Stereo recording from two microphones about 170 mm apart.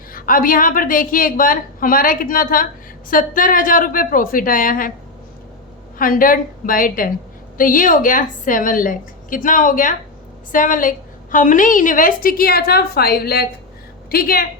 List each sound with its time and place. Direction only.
0.1 s a woman's voice: 55° left (ahead or behind)
6.0 s a woman's voice: 55° left (ahead or behind)